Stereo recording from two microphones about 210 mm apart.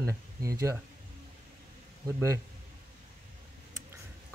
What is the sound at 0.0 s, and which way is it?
Speech, 15° right (ahead or behind).